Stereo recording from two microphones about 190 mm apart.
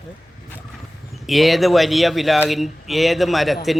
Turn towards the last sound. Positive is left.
turn(degrees=0)  # may be behind; listen again after turning